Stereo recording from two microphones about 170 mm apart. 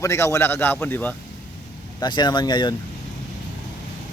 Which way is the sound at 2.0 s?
25° left (ahead or behind).